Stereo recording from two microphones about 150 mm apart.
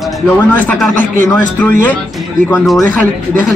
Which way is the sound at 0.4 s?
10° left (ahead or behind).